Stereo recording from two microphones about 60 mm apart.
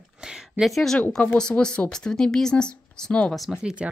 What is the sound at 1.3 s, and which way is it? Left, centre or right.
A woman's voice, centre.